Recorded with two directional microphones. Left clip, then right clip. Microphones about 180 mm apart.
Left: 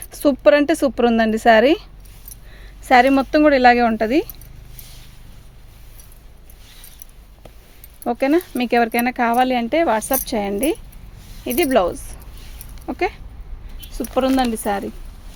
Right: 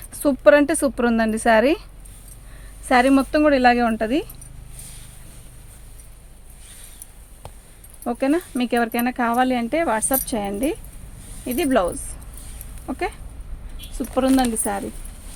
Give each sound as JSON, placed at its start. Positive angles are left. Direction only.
{"t": 0.1, "sound": "speech", "side_deg": 45}
{"t": 8.0, "sound": "speech", "side_deg": 55}